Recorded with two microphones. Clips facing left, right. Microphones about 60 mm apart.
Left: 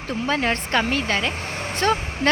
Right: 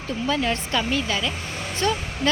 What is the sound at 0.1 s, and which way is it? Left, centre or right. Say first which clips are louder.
Speech: left 1 dB; left.